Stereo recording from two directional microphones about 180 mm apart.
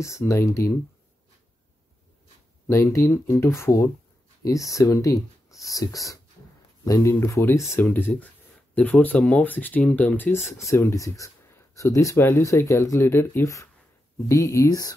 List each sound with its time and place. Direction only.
0.0 s speech: 15° left (ahead or behind)
2.7 s speech: 15° left (ahead or behind)